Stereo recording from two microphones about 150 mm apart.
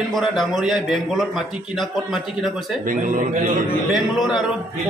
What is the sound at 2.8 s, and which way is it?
Speech, 65° right (ahead or behind).